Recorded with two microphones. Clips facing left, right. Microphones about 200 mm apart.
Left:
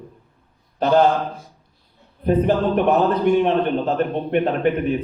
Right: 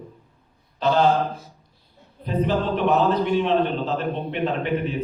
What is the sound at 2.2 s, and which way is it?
Speech, 55° left (ahead or behind).